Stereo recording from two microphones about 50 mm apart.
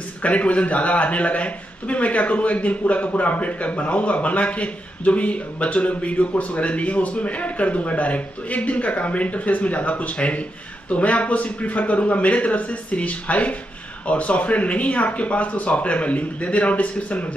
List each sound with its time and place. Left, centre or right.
0.2 s speech: left